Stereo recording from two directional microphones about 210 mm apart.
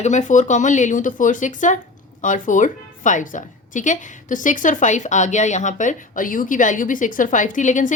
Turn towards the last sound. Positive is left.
turn(degrees=35)  # may be behind; listen again after turning